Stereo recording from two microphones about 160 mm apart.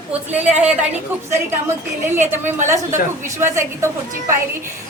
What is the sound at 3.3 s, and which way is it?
Speech, 15° right (ahead or behind).